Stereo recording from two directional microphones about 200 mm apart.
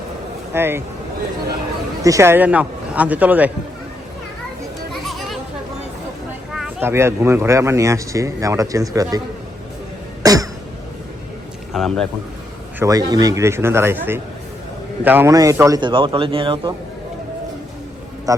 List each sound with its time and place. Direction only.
0.5 s speech: 10° right (ahead or behind)
2.0 s speech: 15° right (ahead or behind)
5.0 s children playing: centre (ahead or behind)
6.5 s speech: 5° right (ahead or behind)
10.2 s cough: 20° right (ahead or behind)
11.7 s a man's voice: centre (ahead or behind)
12.8 s a man's voice: 20° right (ahead or behind)
18.3 s a man's voice: 15° right (ahead or behind)